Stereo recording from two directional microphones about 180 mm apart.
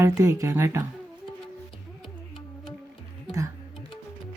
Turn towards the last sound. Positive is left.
turn(degrees=-20)  # may be behind; listen again after turning